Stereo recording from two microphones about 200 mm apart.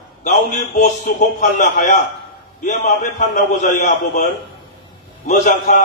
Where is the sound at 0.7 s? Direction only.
40° left (ahead or behind).